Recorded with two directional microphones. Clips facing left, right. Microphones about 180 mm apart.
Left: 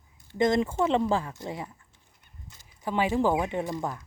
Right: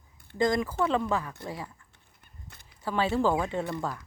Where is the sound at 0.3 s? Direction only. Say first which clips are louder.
Left 2 dB; 25° left (ahead or behind).